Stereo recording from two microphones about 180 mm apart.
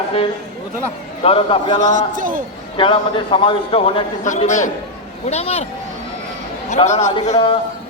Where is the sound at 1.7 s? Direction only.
45° right (ahead or behind).